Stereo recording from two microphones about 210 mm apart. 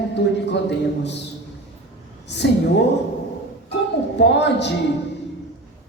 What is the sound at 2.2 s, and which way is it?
Speech, 55° left (ahead or behind).